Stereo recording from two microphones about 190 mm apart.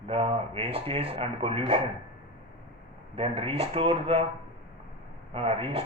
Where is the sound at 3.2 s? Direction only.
30° right (ahead or behind).